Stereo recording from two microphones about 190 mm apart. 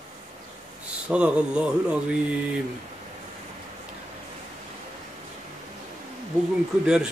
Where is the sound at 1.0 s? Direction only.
5° right (ahead or behind).